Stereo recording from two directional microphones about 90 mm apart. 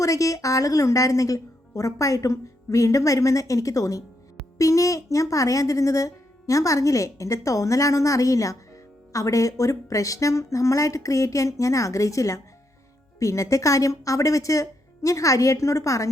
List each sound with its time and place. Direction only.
0.0 s speech: 40° left (ahead or behind)